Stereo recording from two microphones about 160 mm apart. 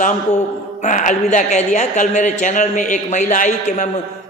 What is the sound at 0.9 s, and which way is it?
A man's voice, 50° left (ahead or behind).